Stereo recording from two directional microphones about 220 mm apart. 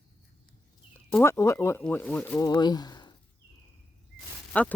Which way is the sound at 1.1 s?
10° left (ahead or behind).